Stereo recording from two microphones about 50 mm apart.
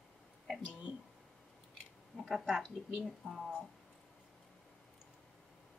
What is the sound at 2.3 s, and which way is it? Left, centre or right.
Speech, centre.